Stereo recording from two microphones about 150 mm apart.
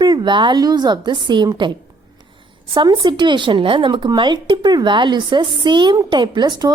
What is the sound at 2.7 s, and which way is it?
Speech, 30° right (ahead or behind).